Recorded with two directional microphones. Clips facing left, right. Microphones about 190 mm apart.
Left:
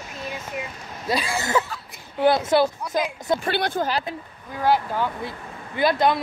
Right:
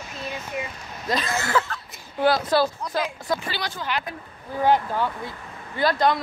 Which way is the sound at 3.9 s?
35° left (ahead or behind).